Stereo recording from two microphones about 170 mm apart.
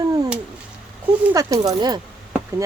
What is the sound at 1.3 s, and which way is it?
Speech, 20° right (ahead or behind).